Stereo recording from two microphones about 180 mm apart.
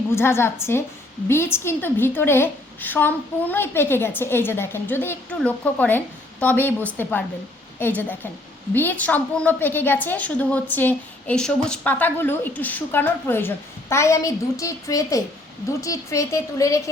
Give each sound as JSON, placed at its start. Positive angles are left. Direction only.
{"t": 0.2, "sound": "a woman's voice", "side_deg": 15}